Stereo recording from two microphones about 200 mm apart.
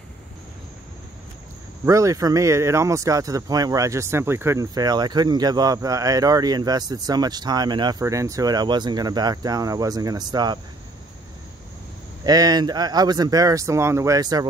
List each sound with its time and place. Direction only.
1.9 s speech: 15° right (ahead or behind)
12.3 s speech: 20° right (ahead or behind)